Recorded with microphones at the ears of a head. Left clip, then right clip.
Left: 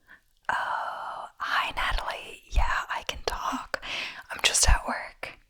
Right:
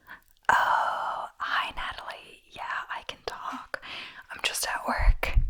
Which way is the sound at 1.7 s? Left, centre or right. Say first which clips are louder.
Left 6 dB; left.